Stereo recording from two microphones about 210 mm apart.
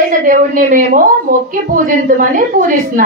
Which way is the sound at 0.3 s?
40° right (ahead or behind).